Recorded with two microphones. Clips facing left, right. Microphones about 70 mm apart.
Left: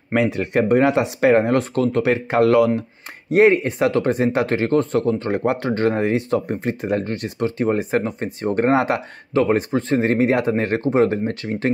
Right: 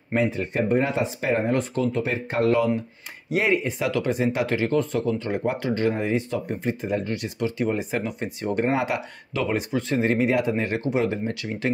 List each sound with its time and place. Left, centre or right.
0.1 s speech: left
3.3 s speech: left